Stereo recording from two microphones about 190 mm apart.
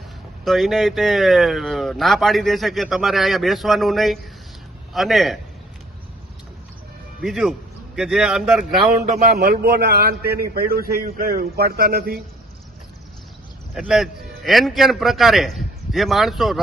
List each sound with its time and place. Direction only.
0.4 s speech: centre (ahead or behind)
7.2 s speech: 5° right (ahead or behind)
9.0 s a man's voice: 55° right (ahead or behind)
13.7 s speech: centre (ahead or behind)